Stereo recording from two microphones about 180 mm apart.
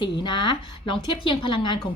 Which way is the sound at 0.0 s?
25° left (ahead or behind).